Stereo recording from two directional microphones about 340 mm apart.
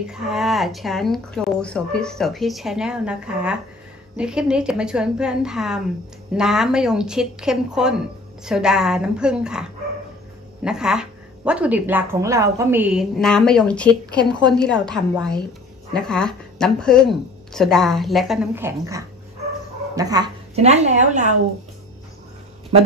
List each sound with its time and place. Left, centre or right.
0.0 s a woman's voice: centre; by 21.4 s right